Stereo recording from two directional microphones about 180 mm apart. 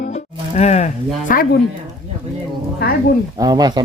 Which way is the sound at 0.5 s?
40° left (ahead or behind).